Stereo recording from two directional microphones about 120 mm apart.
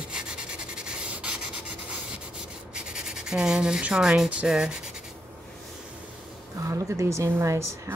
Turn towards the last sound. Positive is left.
turn(degrees=-25)  # may be behind; listen again after turning